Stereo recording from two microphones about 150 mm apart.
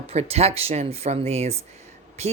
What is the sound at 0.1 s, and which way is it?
A woman's voice, 45° right (ahead or behind).